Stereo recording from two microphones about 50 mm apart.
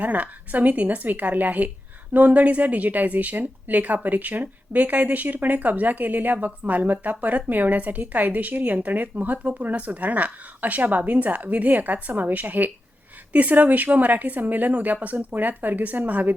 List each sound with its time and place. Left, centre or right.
0.0 s a woman's voice: right